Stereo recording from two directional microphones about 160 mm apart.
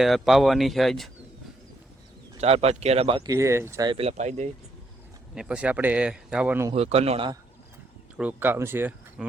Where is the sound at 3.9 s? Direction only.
40° right (ahead or behind).